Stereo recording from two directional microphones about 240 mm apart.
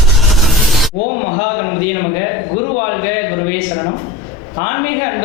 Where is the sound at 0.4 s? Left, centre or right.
Centre.